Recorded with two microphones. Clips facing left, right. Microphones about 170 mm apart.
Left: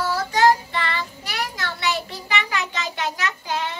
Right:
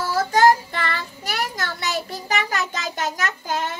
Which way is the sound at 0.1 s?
45° right (ahead or behind).